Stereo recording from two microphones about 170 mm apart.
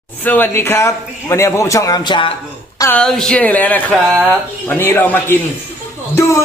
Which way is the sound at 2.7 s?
15° left (ahead or behind).